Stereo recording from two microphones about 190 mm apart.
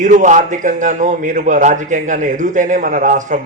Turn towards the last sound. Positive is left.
turn(degrees=-40)  # may be behind; listen again after turning